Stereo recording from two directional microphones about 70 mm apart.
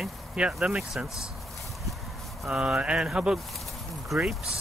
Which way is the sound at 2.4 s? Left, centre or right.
Centre.